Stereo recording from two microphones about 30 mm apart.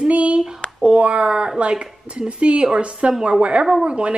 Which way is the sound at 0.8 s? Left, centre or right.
Right.